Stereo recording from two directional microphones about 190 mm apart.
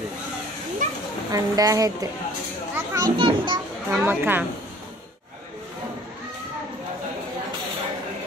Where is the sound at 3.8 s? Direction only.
10° right (ahead or behind).